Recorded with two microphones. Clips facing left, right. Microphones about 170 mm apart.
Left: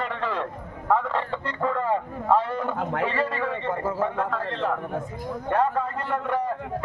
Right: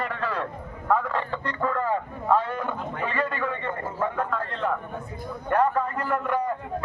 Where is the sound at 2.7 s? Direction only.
90° left.